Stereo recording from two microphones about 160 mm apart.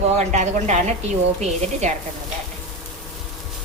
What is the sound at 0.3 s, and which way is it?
Speech, 45° right (ahead or behind).